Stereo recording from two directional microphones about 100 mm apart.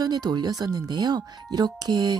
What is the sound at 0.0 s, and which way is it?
Speech, 45° right (ahead or behind).